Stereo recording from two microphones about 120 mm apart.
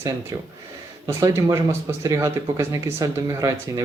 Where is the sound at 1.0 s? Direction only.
25° right (ahead or behind).